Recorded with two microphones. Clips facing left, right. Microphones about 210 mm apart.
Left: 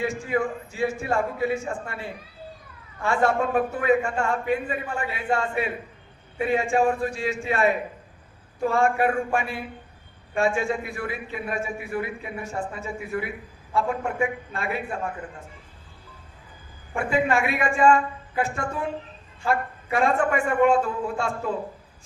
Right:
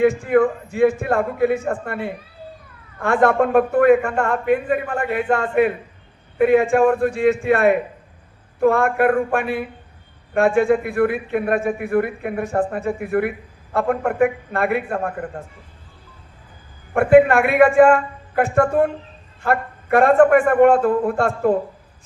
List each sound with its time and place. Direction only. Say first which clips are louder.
0.0 s a man's voice: right 10 dB; 55° right (ahead or behind)
16.9 s a man's voice: right 11 dB; 60° right (ahead or behind)